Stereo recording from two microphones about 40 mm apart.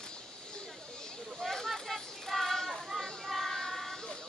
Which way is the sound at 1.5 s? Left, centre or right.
Centre.